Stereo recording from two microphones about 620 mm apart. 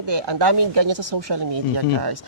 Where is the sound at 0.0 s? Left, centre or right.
Right.